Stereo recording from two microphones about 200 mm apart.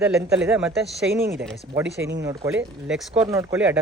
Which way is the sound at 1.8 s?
60° right (ahead or behind).